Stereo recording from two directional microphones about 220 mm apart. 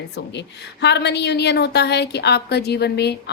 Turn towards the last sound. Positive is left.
turn(degrees=50)  # may be behind; listen again after turning